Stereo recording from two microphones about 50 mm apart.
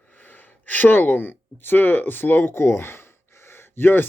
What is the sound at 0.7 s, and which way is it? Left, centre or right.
Speech, left.